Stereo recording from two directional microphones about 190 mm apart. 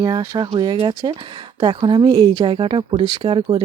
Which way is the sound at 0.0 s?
20° right (ahead or behind).